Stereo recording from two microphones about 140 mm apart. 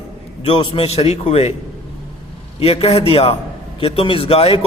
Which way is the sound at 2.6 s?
45° left (ahead or behind).